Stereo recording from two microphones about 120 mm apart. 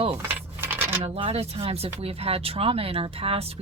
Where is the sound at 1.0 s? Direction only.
55° right (ahead or behind).